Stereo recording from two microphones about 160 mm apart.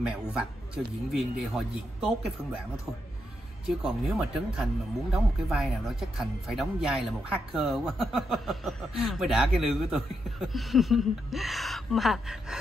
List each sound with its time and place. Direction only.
0.0 s speech: 5° right (ahead or behind)
3.6 s speech: 5° right (ahead or behind)